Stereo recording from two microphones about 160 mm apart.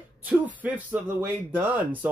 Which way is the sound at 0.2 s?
10° right (ahead or behind).